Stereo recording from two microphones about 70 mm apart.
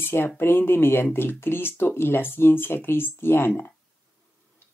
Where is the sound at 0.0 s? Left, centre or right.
Left.